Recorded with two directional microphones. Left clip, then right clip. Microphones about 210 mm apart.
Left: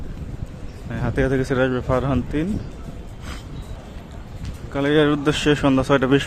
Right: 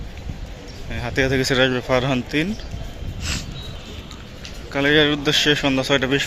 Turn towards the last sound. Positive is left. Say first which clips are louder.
# left 1 dB
turn(degrees=20)  # may be behind; listen again after turning